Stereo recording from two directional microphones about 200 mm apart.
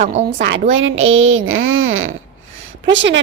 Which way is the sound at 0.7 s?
75° right (ahead or behind).